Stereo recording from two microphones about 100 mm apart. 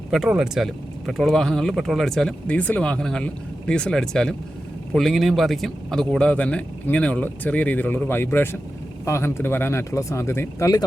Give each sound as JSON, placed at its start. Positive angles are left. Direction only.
{"t": 0.1, "sound": "speech", "side_deg": -5}